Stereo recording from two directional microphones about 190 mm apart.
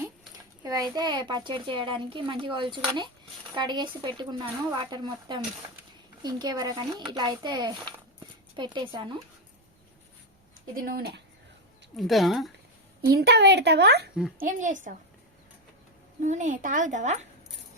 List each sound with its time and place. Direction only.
0.6 s speech: 20° right (ahead or behind)
10.8 s speech: 55° right (ahead or behind)
11.9 s speech: centre (ahead or behind)
13.1 s speech: 60° right (ahead or behind)
14.3 s a woman's voice: 45° right (ahead or behind)
16.2 s a woman's voice: 40° right (ahead or behind)